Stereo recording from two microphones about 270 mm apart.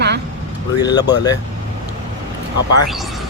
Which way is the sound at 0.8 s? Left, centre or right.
Centre.